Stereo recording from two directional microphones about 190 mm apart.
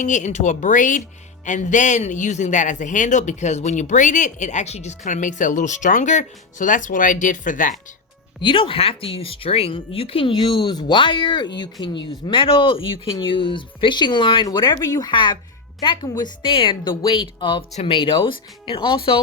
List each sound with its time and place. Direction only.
0.0 s speech: 40° left (ahead or behind)
8.4 s speech: 25° left (ahead or behind)